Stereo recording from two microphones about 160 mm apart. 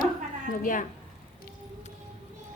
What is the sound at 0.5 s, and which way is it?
Speech, 55° left (ahead or behind).